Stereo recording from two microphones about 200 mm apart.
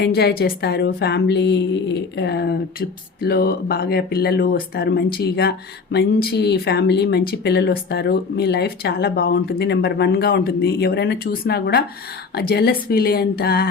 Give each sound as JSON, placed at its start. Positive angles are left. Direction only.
{"t": 0.0, "sound": "a woman's voice", "side_deg": 55}